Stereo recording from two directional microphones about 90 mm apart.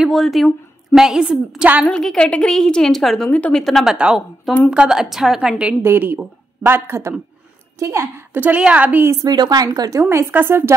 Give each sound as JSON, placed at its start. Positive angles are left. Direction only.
{"t": 0.0, "sound": "a woman's voice", "side_deg": 0}
{"t": 1.9, "sound": "a woman's voice", "side_deg": 10}
{"t": 3.3, "sound": "a woman's voice", "side_deg": 15}
{"t": 3.6, "sound": "a woman's voice", "side_deg": 0}
{"t": 3.9, "sound": "a woman's voice", "side_deg": -10}
{"t": 5.8, "sound": "speech", "side_deg": -25}
{"t": 9.0, "sound": "speech", "side_deg": -35}
{"t": 9.3, "sound": "speech", "side_deg": -50}